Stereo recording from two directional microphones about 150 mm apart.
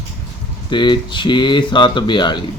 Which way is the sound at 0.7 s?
30° left (ahead or behind).